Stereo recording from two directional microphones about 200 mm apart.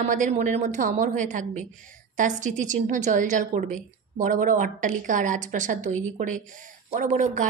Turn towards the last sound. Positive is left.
turn(degrees=-40)  # may be behind; listen again after turning